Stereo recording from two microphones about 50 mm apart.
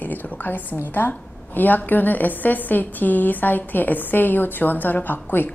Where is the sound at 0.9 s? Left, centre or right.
Left.